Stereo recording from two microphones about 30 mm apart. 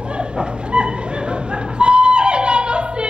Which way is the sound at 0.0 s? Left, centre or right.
Right.